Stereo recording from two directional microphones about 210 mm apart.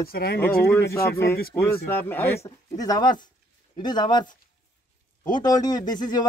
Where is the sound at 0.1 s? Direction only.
45° left (ahead or behind).